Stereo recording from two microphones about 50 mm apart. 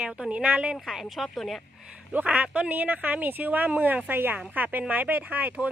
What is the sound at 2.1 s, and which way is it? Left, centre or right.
Speech, right.